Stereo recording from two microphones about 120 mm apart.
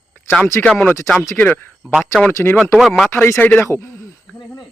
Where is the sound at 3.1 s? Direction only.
20° left (ahead or behind).